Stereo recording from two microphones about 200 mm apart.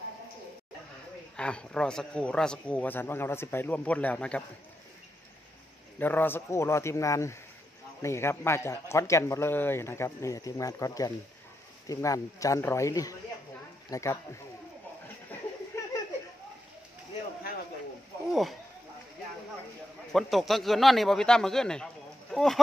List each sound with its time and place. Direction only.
1.3 s speech: 5° left (ahead or behind)
5.9 s a man's voice: 10° left (ahead or behind)
15.7 s a sound: 15° left (ahead or behind)
18.3 s speech: centre (ahead or behind)
20.1 s a man's voice: centre (ahead or behind)